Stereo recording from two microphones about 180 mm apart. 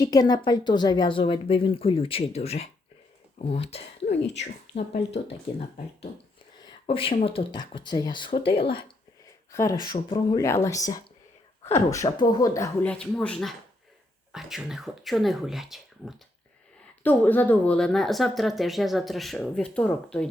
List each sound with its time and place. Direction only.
0.0 s a woman's voice: 20° left (ahead or behind)
9.5 s a woman's voice: 15° left (ahead or behind)
12.8 s speech: 5° left (ahead or behind)
17.0 s speech: 10° left (ahead or behind)